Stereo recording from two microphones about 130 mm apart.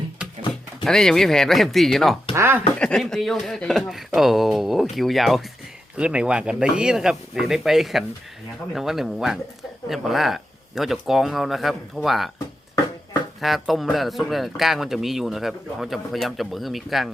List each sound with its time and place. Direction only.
0.9 s speech: 5° left (ahead or behind)
2.3 s speech: 20° right (ahead or behind)
2.7 s speech: 5° left (ahead or behind)
13.4 s speech: centre (ahead or behind)